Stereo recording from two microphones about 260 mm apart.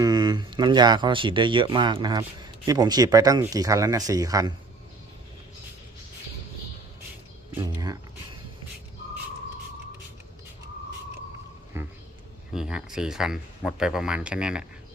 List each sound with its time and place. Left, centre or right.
0.0 s speech: centre
11.7 s a sound: centre
12.5 s speech: centre